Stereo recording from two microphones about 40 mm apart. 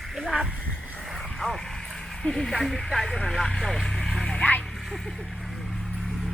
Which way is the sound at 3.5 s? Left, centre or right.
Centre.